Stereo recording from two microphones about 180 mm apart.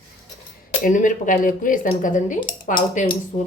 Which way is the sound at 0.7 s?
45° left (ahead or behind).